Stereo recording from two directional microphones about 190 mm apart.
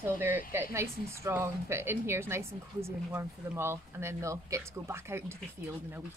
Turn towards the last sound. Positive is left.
turn(degrees=-15)  # may be behind; listen again after turning